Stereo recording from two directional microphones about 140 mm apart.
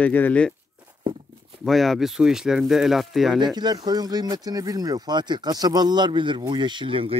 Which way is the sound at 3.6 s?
30° right (ahead or behind).